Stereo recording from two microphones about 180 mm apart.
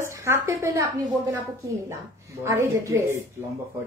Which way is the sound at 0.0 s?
15° right (ahead or behind).